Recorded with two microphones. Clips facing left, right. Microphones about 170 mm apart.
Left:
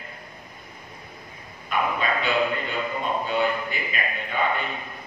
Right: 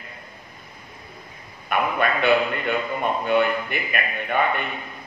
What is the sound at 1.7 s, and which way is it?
A man's voice, 60° right (ahead or behind).